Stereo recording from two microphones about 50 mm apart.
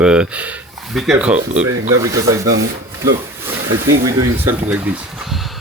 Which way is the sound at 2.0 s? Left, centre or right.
Right.